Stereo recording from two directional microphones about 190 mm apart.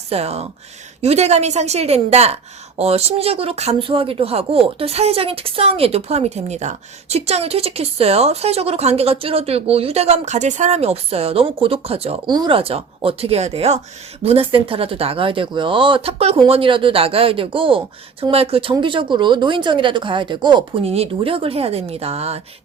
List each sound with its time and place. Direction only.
0.1 s a woman's voice: 35° right (ahead or behind)